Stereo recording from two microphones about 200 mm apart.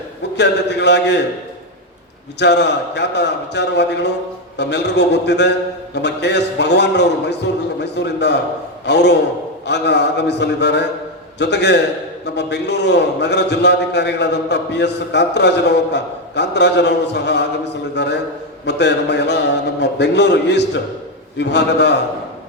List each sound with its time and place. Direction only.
0.3 s a man's voice: 60° left (ahead or behind)
2.4 s a man's voice: 60° left (ahead or behind)